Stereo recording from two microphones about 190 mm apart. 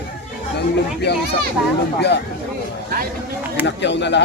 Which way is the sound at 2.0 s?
60° left (ahead or behind).